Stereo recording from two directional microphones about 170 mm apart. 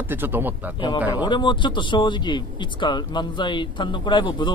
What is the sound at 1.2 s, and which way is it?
Speech, 30° left (ahead or behind).